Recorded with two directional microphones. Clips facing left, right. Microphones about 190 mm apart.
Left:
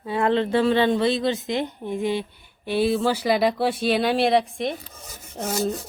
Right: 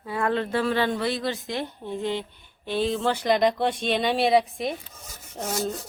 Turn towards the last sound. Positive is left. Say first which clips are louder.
# left 3 dB
turn(degrees=5)  # may be behind; listen again after turning